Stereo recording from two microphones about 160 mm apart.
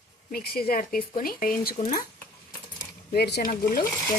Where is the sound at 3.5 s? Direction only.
65° left (ahead or behind).